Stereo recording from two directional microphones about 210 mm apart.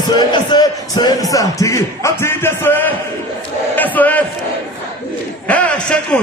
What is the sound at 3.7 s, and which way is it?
Crowd, 10° left (ahead or behind).